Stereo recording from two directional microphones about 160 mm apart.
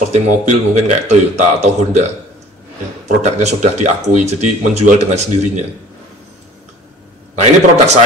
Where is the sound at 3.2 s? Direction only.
45° right (ahead or behind).